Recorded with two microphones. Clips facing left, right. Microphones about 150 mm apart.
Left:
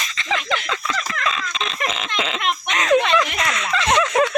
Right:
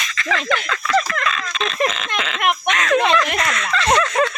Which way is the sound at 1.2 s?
25° left (ahead or behind).